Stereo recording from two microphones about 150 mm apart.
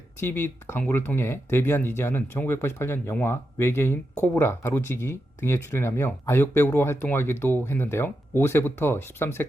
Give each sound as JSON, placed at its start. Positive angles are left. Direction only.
{"t": 0.2, "sound": "speech", "side_deg": 15}